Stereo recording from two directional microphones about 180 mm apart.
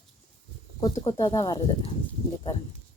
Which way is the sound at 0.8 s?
25° left (ahead or behind).